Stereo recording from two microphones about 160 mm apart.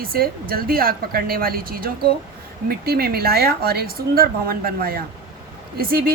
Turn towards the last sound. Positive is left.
turn(degrees=-70)  # may be behind; listen again after turning